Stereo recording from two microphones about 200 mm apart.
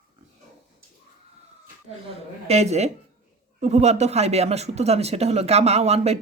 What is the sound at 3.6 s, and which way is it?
Speech, 35° right (ahead or behind).